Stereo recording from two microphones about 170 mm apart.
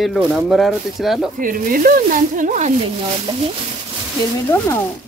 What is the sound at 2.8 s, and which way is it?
Speech, 35° right (ahead or behind).